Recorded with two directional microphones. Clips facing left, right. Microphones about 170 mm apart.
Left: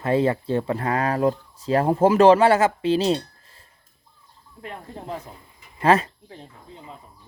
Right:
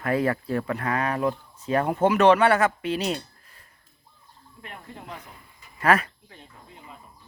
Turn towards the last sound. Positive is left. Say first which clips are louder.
# left 4 dB
turn(degrees=30)  # may be behind; listen again after turning